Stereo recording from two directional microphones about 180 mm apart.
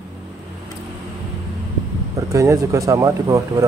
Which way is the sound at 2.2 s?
15° right (ahead or behind).